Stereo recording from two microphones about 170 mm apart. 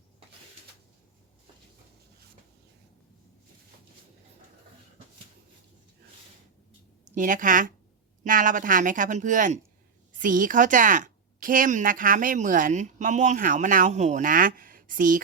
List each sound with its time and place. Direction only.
7.2 s a woman's voice: 50° right (ahead or behind)